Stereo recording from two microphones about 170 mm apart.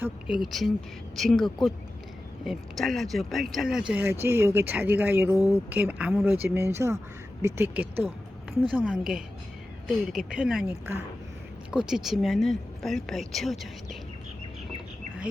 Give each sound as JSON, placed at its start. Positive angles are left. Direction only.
{"t": 0.0, "sound": "speech", "side_deg": -5}
{"t": 11.7, "sound": "speech", "side_deg": -5}